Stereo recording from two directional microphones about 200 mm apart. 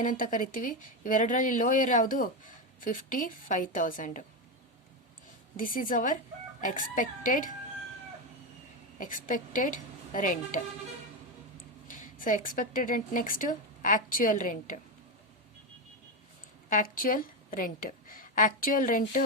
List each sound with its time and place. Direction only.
0.0 s speech: 40° left (ahead or behind)
5.5 s a woman's voice: 45° left (ahead or behind)
9.0 s speech: 40° left (ahead or behind)
11.9 s speech: 40° left (ahead or behind)
16.6 s a woman's voice: 45° left (ahead or behind)